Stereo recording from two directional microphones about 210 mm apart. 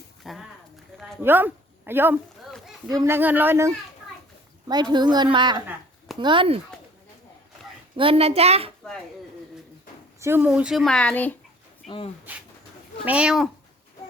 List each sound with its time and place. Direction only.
0.2 s a sound: centre (ahead or behind)
0.9 s speech: centre (ahead or behind)
4.7 s a woman's voice: 20° right (ahead or behind)
7.9 s a woman's voice: 25° right (ahead or behind)
10.2 s speech: 10° right (ahead or behind); by 11.3 s 10° left (ahead or behind)
11.9 s speech: 25° left (ahead or behind)
13.1 s speech: 5° right (ahead or behind)